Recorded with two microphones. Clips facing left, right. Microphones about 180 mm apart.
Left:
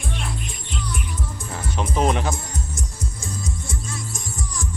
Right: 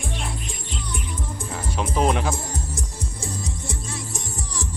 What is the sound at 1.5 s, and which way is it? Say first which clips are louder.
Speech: even; 5° right (ahead or behind).